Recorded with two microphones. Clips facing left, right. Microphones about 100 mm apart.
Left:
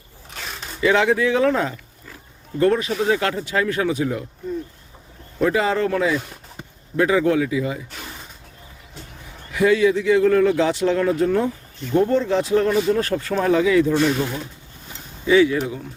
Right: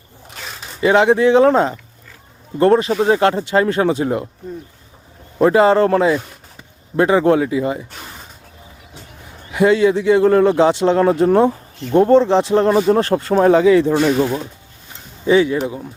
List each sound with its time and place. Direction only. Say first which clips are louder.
0.8 s a man's voice: right 5 dB; 25° right (ahead or behind)
5.4 s a man's voice: right 8 dB; 35° right (ahead or behind)
9.5 s a man's voice: right 3 dB; 30° right (ahead or behind)
13.3 s a man's voice: right 6 dB; 40° right (ahead or behind)